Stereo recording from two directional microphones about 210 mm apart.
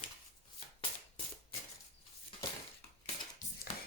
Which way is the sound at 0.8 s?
25° left (ahead or behind).